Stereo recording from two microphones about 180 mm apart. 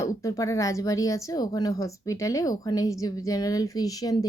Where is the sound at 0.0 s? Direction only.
20° left (ahead or behind).